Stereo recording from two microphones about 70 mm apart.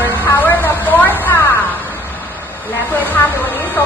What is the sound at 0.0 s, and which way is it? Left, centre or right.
Vehicle, left.